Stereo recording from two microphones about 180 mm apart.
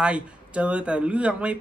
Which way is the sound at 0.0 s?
5° right (ahead or behind).